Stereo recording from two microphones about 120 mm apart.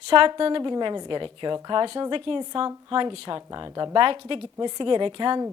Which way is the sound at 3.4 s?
30° right (ahead or behind).